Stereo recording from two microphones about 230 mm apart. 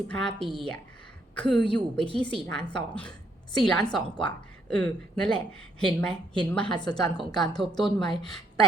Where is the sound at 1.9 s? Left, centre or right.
Left.